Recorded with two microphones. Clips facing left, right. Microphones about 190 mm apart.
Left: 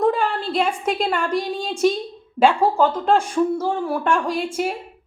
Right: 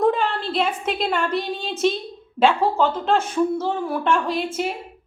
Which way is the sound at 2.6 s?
10° left (ahead or behind).